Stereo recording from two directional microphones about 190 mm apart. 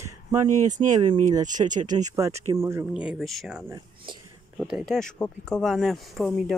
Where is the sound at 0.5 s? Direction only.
40° right (ahead or behind).